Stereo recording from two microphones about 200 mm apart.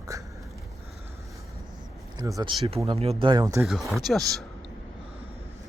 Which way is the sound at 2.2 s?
20° right (ahead or behind).